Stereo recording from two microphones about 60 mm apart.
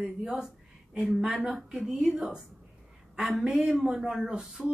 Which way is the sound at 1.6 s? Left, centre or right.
Centre.